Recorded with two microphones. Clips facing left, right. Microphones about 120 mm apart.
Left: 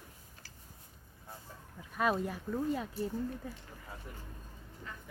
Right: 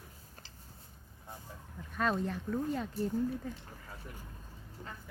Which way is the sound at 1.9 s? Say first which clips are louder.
Left 1 dB; 10° left (ahead or behind).